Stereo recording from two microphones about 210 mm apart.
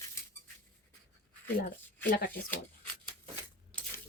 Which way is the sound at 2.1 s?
45° left (ahead or behind).